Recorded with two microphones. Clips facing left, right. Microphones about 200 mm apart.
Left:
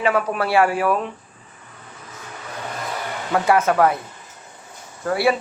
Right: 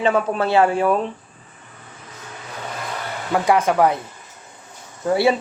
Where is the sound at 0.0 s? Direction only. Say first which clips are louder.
Right 2 dB; 25° right (ahead or behind).